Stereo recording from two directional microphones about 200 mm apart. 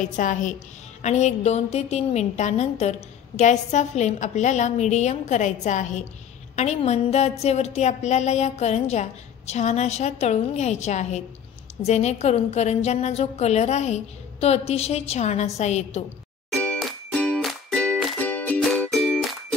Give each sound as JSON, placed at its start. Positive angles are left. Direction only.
{"t": 0.0, "sound": "a woman's voice", "side_deg": 40}
{"t": 16.4, "sound": "music", "side_deg": 5}